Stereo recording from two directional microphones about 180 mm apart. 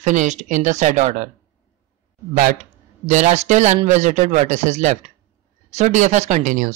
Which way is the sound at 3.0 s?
40° right (ahead or behind).